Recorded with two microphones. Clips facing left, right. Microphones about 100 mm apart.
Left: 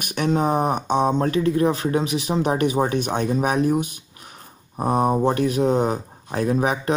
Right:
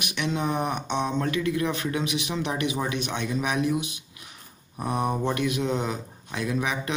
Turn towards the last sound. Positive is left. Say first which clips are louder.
# left 7 dB
turn(degrees=40)  # may be behind; listen again after turning